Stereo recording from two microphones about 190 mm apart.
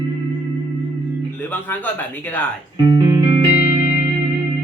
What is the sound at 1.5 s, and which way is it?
Speech, 10° left (ahead or behind).